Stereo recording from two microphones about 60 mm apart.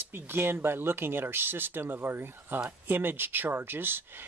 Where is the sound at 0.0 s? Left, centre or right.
Right.